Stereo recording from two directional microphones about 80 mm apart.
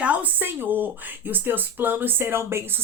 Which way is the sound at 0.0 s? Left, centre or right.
Centre.